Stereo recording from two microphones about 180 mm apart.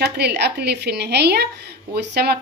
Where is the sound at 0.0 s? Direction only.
65° right (ahead or behind).